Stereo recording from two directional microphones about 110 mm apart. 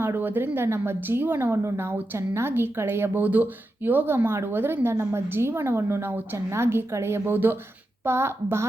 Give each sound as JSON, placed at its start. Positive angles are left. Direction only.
{"t": 0.0, "sound": "a woman's voice", "side_deg": -20}